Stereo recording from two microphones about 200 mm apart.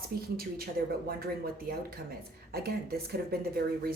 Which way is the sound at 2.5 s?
50° right (ahead or behind).